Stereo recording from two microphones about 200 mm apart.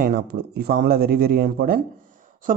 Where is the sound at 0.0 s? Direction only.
50° right (ahead or behind).